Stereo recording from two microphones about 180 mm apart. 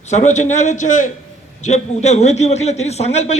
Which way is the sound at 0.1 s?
40° left (ahead or behind).